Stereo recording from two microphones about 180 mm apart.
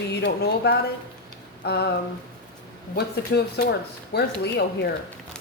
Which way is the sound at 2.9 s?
60° left (ahead or behind).